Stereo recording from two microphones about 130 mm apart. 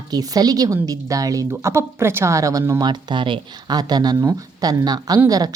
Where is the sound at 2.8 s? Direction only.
35° right (ahead or behind).